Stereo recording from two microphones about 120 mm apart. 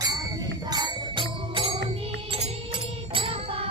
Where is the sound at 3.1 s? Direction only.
50° right (ahead or behind).